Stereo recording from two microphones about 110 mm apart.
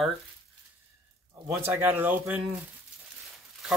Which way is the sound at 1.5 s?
20° right (ahead or behind).